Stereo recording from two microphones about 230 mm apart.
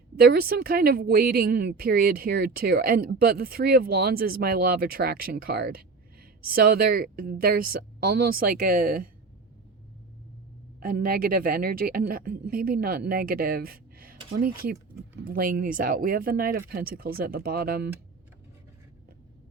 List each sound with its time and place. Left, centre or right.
0.2 s speech: right
10.8 s speech: right